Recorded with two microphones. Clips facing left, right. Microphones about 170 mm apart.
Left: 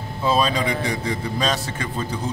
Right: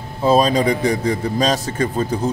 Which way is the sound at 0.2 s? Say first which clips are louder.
Right 6 dB; 40° right (ahead or behind).